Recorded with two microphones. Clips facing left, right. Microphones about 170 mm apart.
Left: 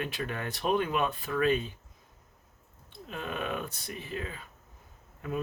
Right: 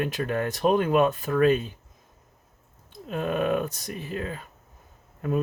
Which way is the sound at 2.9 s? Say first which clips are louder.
Right 9 dB; 50° right (ahead or behind).